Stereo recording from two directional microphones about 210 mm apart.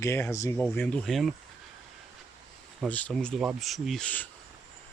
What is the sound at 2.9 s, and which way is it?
Speech, 5° left (ahead or behind).